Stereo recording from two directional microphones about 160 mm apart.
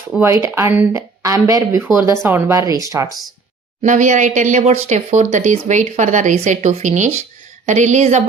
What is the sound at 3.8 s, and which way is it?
Speech, 50° right (ahead or behind).